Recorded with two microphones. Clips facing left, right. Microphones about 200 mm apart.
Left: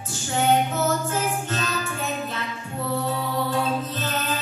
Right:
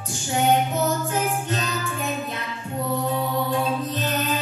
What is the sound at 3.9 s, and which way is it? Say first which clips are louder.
Music: right 3 dB; 15° right (ahead or behind).